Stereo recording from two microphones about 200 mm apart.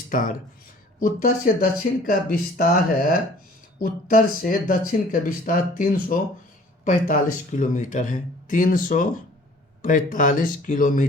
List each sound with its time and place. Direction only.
0.1 s speech: 40° left (ahead or behind)